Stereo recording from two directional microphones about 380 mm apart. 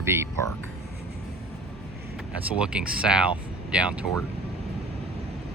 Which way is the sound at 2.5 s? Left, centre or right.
Centre.